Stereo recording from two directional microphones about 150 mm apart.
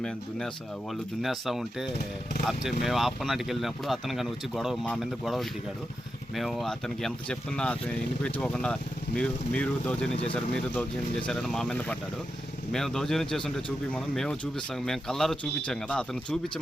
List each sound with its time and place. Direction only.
0.0 s speech: 5° left (ahead or behind)